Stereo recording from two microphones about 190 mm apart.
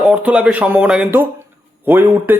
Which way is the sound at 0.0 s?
5° right (ahead or behind).